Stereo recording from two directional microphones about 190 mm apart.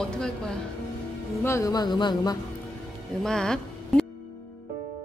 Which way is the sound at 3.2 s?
5° left (ahead or behind).